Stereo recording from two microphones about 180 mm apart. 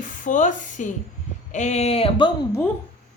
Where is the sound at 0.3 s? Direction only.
45° left (ahead or behind); by 2.3 s 30° left (ahead or behind).